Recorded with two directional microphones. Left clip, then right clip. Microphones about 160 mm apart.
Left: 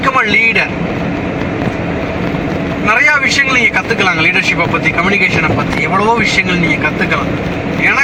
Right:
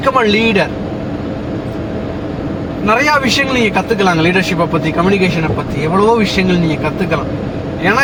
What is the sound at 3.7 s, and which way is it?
Speech, 30° right (ahead or behind).